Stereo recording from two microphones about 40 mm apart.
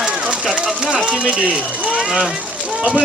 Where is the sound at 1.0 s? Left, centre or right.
Right.